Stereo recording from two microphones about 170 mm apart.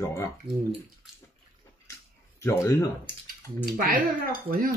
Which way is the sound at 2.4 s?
15° left (ahead or behind).